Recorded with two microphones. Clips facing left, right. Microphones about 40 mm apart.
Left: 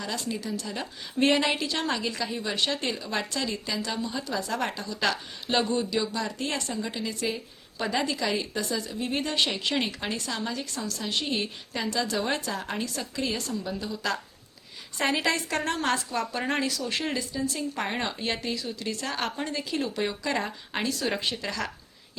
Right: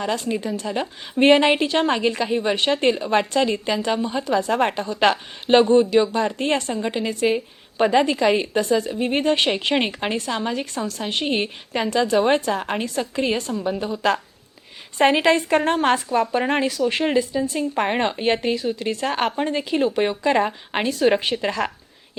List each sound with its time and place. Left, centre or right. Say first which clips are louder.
0.0 s a woman's voice: right 8 dB; right